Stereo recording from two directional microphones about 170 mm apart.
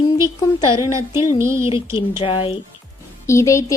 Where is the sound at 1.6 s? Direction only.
30° left (ahead or behind).